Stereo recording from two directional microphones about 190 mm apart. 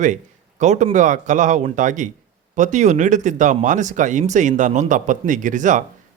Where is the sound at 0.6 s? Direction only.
40° right (ahead or behind).